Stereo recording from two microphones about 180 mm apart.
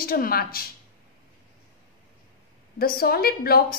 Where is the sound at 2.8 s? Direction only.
55° left (ahead or behind).